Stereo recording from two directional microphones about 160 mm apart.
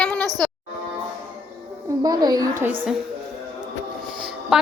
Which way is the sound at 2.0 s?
25° right (ahead or behind).